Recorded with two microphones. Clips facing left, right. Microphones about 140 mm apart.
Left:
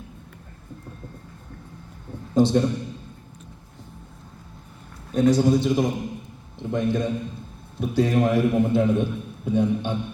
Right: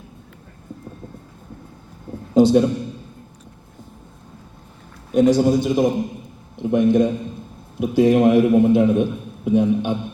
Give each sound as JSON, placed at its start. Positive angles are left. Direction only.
{"t": 2.3, "sound": "a man's voice", "side_deg": -10}
{"t": 5.1, "sound": "a man's voice", "side_deg": -15}